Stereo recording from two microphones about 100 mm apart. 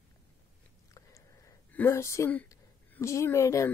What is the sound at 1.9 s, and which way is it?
Speech, 30° left (ahead or behind).